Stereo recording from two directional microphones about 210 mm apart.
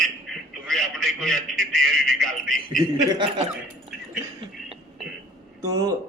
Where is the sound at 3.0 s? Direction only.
20° right (ahead or behind).